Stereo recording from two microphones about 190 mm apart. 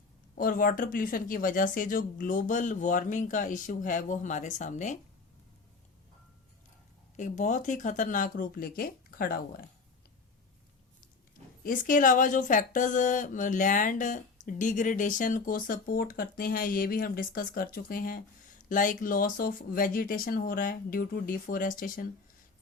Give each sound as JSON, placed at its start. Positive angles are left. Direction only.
{"t": 0.3, "sound": "speech", "side_deg": 50}
{"t": 7.2, "sound": "speech", "side_deg": 40}
{"t": 11.6, "sound": "speech", "side_deg": 45}